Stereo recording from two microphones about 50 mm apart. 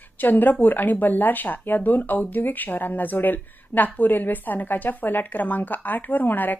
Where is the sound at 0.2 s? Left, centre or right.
Left.